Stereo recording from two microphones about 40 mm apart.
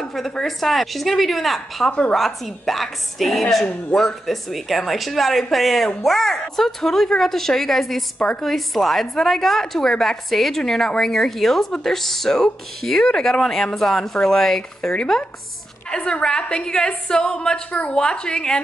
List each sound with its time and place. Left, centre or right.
0.0 s a sound: centre
0.3 s speech: centre
1.9 s a woman's voice: left
2.1 s a woman's voice: centre
16.0 s a woman's voice: left
17.6 s a woman's voice: left
17.9 s a woman's voice: left